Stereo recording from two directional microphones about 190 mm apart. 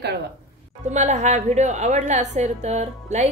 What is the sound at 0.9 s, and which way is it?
A woman's voice, 35° right (ahead or behind).